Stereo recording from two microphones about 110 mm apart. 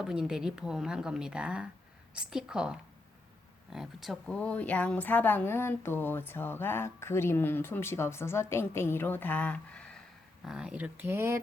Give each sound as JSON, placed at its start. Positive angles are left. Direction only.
{"t": 0.0, "sound": "speech", "side_deg": -5}
{"t": 4.4, "sound": "speech", "side_deg": 15}
{"t": 10.4, "sound": "speech", "side_deg": -5}